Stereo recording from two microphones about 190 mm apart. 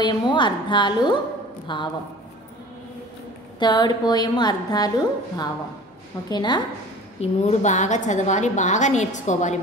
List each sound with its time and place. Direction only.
0.0 s a woman's voice: 25° left (ahead or behind)
3.5 s a woman's voice: 20° left (ahead or behind)
7.2 s a woman's voice: 40° left (ahead or behind)